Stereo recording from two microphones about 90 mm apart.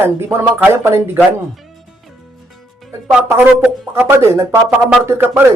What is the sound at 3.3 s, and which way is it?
Speech, 20° right (ahead or behind).